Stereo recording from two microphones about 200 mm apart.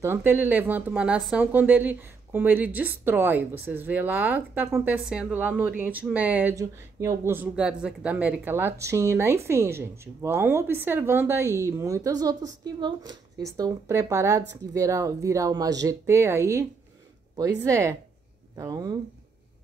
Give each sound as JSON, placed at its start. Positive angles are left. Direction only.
{"t": 0.0, "sound": "speech", "side_deg": -10}